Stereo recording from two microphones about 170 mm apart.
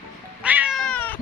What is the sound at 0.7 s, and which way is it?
Cat, 5° left (ahead or behind).